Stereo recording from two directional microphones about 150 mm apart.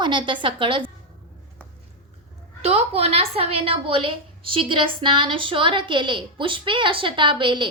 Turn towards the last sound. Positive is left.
turn(degrees=-35)  # may be behind; listen again after turning